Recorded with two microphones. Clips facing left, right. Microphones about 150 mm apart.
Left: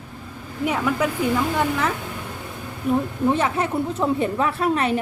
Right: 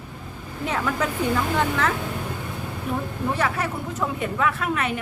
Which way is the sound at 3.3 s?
25° left (ahead or behind).